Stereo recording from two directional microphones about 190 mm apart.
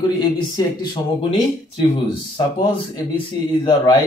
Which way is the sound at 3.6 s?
20° left (ahead or behind).